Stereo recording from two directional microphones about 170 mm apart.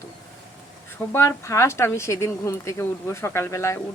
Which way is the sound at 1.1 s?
15° left (ahead or behind).